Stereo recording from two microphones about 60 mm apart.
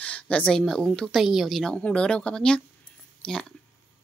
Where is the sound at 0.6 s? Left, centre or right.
Centre.